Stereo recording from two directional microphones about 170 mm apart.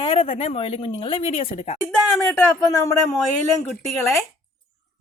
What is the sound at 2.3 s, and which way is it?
Speech, 20° left (ahead or behind).